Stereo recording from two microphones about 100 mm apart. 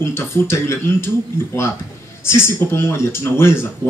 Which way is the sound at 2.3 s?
25° left (ahead or behind).